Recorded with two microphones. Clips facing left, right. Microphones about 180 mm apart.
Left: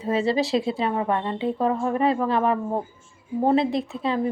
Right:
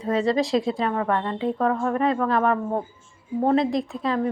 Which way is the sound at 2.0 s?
30° left (ahead or behind).